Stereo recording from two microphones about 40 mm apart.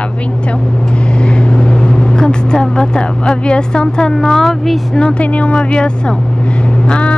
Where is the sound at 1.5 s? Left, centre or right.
Left; by 4.7 s centre.